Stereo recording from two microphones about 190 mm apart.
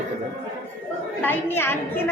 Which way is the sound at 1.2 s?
10° left (ahead or behind).